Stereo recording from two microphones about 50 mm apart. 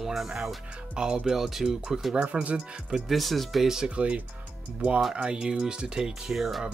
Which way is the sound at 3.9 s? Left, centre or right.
Right.